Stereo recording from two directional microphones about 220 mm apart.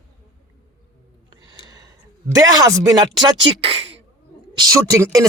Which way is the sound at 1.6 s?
15° right (ahead or behind).